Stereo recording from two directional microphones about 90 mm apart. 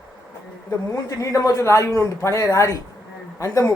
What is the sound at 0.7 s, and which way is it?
A man's voice, 35° left (ahead or behind).